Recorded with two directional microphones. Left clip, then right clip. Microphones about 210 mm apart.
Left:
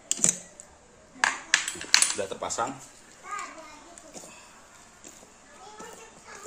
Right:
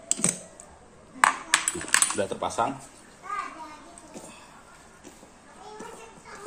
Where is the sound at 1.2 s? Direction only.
25° right (ahead or behind).